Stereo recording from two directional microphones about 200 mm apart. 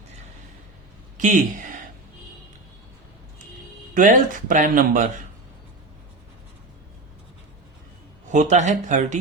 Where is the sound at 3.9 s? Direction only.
40° right (ahead or behind).